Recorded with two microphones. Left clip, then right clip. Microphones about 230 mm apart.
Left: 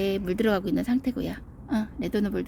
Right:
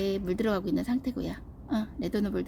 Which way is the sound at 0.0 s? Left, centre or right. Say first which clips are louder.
Left 4 dB; centre.